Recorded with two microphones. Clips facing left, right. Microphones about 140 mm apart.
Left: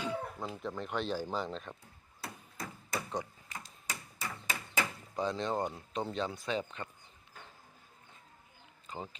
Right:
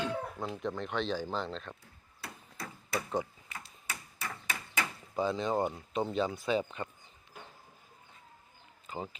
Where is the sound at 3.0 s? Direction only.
5° right (ahead or behind).